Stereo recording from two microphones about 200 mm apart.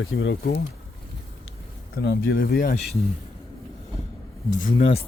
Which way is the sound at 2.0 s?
60° left (ahead or behind).